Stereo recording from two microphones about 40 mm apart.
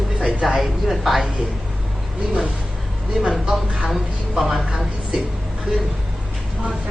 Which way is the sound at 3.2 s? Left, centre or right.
Centre.